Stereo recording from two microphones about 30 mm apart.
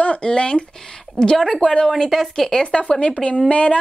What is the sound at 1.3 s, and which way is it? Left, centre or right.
Speech, centre.